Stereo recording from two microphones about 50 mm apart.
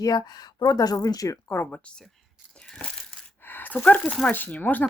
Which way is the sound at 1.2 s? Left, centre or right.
Left.